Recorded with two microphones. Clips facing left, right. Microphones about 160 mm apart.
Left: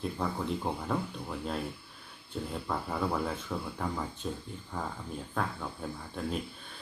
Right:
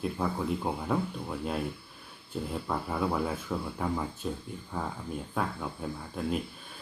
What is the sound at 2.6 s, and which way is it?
Speech, 5° right (ahead or behind).